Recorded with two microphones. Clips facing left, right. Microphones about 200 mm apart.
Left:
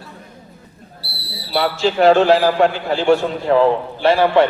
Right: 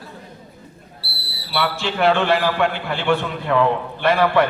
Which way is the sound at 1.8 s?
40° left (ahead or behind).